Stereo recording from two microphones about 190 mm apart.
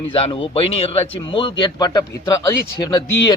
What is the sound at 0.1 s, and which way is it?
A man's voice, 30° left (ahead or behind).